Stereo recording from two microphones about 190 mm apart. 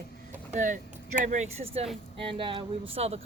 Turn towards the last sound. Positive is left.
turn(degrees=-30)  # may be behind; listen again after turning